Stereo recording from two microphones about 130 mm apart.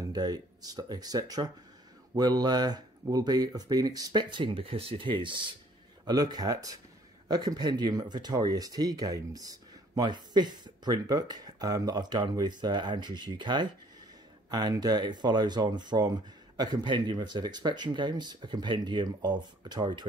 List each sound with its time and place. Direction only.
0.0 s speech: 30° right (ahead or behind)